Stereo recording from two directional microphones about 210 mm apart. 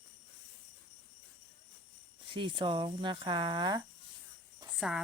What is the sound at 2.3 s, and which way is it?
Speech, 25° right (ahead or behind).